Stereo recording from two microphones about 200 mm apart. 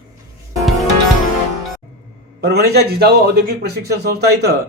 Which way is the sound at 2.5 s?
55° right (ahead or behind).